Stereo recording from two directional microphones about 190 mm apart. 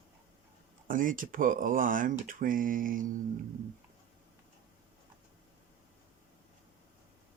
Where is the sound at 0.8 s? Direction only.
45° right (ahead or behind).